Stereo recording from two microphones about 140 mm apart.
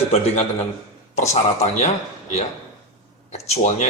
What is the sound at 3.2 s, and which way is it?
Speech, 55° left (ahead or behind).